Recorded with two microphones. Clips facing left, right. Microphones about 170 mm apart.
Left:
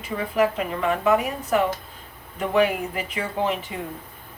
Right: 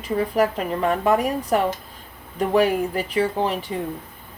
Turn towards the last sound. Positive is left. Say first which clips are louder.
# right 4 dB
turn(degrees=-35)  # may be behind; listen again after turning